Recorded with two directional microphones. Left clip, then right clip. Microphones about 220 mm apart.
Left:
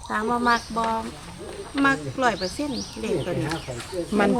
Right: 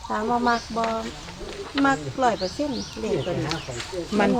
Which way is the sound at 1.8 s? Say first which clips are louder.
Even; 5° left (ahead or behind).